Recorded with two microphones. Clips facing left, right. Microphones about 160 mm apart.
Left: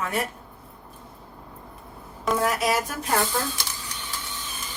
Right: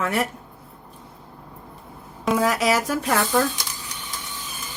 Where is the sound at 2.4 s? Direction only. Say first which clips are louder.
Right 3 dB; 90° right.